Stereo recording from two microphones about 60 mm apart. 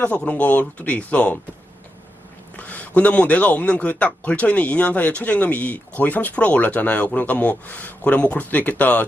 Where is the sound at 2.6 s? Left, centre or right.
Left.